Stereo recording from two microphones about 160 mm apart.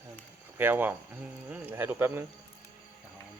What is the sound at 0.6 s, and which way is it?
Speech, 10° right (ahead or behind).